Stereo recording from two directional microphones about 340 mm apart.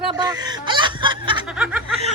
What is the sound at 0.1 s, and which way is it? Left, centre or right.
Snicker, centre.